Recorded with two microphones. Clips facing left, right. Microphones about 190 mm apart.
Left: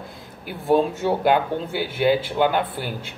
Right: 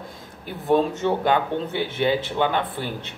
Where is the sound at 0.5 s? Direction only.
5° left (ahead or behind).